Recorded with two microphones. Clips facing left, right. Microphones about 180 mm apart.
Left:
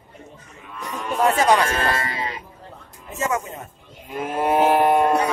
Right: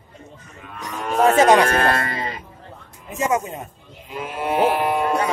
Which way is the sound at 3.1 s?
15° right (ahead or behind).